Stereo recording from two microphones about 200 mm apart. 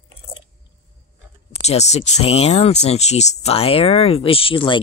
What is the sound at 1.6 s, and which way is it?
Speech, 35° left (ahead or behind).